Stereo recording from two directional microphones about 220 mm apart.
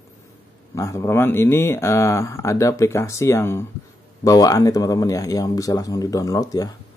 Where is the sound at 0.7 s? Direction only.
15° left (ahead or behind).